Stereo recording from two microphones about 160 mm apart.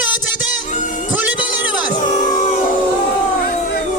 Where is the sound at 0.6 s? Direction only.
50° left (ahead or behind).